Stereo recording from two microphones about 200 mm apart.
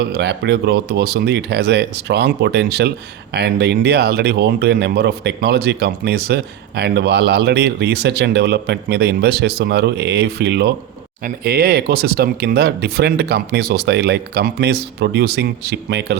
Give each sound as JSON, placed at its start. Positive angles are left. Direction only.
{"t": 0.0, "sound": "speech", "side_deg": -55}